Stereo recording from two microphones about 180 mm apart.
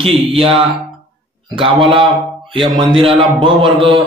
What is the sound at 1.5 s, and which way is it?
A man's voice, 30° right (ahead or behind).